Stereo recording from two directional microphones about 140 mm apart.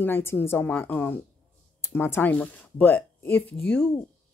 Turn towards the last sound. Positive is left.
turn(degrees=5)  # may be behind; listen again after turning